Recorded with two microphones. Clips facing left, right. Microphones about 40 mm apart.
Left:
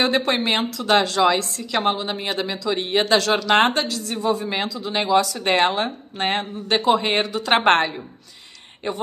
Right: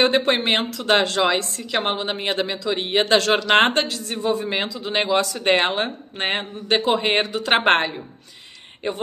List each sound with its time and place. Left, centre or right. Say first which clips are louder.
0.0 s speech: right 2 dB; right
3.2 s speech: right 1 dB; right; by 7.9 s centre